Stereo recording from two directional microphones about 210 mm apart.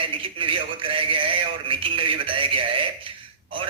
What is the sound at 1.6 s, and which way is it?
A man's voice, 25° right (ahead or behind).